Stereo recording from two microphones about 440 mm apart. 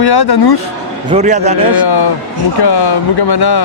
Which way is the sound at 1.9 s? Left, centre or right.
Left.